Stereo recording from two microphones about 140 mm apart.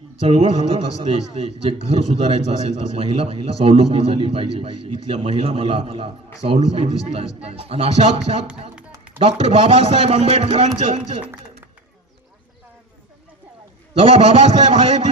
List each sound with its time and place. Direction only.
0.2 s a man's voice: 45° right (ahead or behind)
14.0 s a man's voice: 40° right (ahead or behind)